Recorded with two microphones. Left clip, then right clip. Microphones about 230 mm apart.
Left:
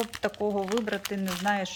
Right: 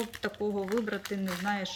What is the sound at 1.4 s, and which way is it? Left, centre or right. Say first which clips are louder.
Speech: left 6 dB; centre.